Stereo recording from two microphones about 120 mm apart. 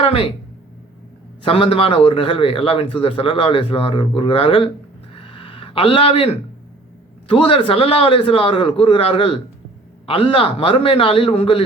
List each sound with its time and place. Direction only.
0.0 s speech: 50° left (ahead or behind)
1.5 s a man's voice: 50° left (ahead or behind)
5.1 s a sound: 45° left (ahead or behind)
7.3 s a man's voice: 50° left (ahead or behind)